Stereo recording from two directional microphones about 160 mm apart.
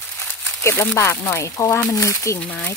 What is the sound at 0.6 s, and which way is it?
Speech, 15° left (ahead or behind).